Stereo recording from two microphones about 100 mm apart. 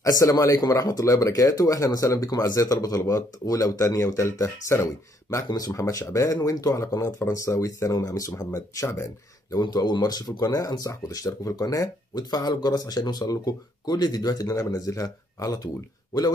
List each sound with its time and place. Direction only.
0.0 s speech: 35° left (ahead or behind)
9.6 s speech: 45° left (ahead or behind)